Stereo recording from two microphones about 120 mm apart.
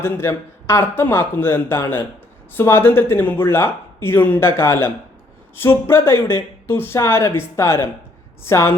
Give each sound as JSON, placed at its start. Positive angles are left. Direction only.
{"t": 0.0, "sound": "speech", "side_deg": 20}